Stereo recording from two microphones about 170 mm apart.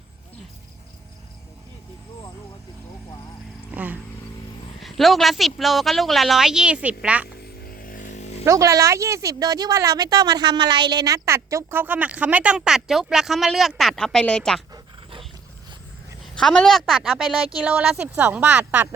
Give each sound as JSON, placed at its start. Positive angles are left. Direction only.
{"t": 4.8, "sound": "a woman's voice", "side_deg": 0}
{"t": 7.4, "sound": "vehicle", "side_deg": 60}
{"t": 8.4, "sound": "speech", "side_deg": -20}
{"t": 16.3, "sound": "a woman's voice", "side_deg": 5}